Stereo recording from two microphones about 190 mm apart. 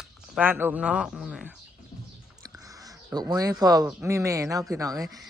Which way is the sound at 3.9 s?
10° right (ahead or behind).